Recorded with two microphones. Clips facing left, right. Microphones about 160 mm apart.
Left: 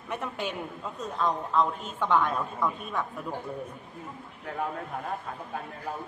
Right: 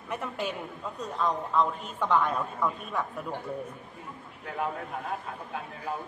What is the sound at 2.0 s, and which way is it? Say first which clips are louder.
A woman's voice: even; 5° right (ahead or behind).